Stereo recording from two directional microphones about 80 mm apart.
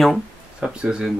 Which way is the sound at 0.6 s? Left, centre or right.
Centre.